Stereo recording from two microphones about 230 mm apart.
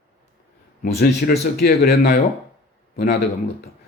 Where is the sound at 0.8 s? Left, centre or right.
Left.